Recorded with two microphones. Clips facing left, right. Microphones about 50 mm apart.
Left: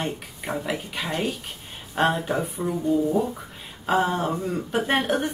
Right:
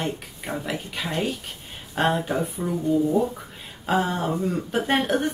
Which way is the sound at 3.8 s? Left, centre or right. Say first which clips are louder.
Left 1 dB; centre.